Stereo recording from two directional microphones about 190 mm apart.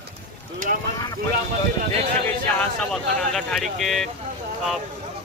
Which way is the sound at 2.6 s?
5° left (ahead or behind).